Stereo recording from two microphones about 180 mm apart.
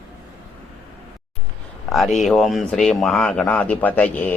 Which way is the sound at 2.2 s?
Centre (ahead or behind).